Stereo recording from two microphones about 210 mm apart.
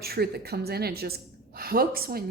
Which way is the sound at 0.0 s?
45° right (ahead or behind).